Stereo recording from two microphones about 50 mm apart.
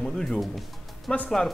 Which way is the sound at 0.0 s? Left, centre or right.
Centre.